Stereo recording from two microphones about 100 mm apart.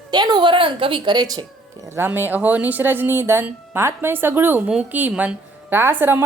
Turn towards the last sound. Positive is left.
turn(degrees=-20)  # may be behind; listen again after turning